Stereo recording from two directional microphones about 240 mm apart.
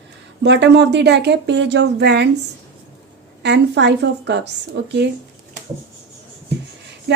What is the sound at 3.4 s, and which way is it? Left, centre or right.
Speech, right.